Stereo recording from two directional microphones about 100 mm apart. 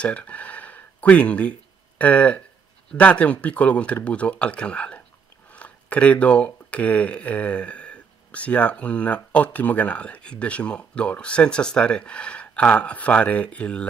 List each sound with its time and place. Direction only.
0.0 s speech: 15° left (ahead or behind)